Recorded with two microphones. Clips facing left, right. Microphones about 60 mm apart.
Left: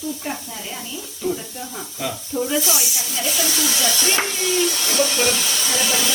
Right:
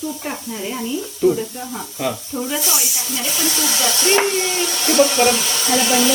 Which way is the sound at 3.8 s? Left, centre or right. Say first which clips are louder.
Right 7 dB; right.